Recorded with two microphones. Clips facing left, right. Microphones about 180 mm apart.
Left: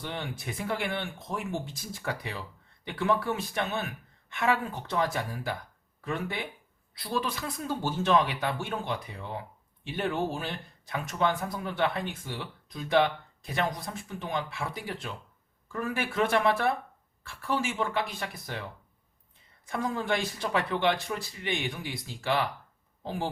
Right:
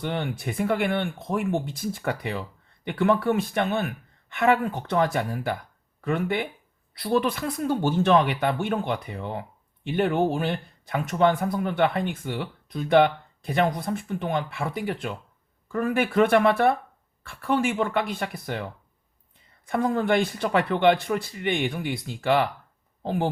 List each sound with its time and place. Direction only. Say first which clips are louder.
0.0 s speech: right 7 dB; 55° right (ahead or behind)
19.6 s speech: right 7 dB; 55° right (ahead or behind)